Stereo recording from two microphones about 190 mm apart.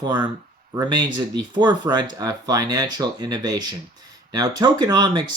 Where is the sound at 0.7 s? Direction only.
20° right (ahead or behind).